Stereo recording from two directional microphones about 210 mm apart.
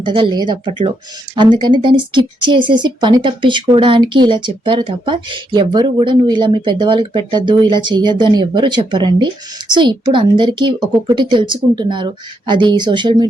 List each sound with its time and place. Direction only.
0.0 s speech: 25° right (ahead or behind)